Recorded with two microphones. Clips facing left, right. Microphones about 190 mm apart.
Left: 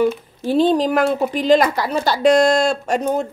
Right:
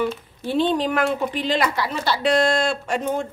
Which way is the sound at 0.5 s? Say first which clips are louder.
Left 5 dB; 40° left (ahead or behind).